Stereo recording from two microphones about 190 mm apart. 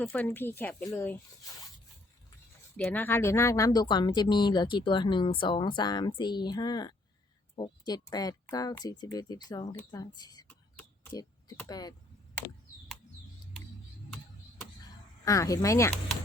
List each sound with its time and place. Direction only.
0.0 s speech: 10° left (ahead or behind)
2.7 s speech: 10° left (ahead or behind)
15.2 s speech: 15° left (ahead or behind)